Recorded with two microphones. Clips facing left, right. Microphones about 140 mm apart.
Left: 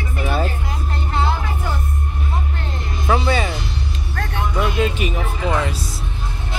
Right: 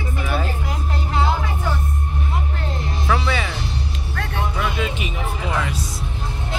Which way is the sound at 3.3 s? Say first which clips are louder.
Left 4 dB; 35° left (ahead or behind).